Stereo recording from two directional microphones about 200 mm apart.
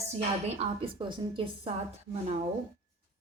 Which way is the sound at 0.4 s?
30° right (ahead or behind).